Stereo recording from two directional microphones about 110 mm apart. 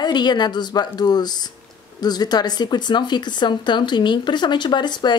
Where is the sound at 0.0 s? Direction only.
40° left (ahead or behind).